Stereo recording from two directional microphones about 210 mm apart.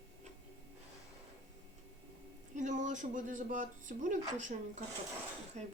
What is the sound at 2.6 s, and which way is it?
Speech, 35° right (ahead or behind).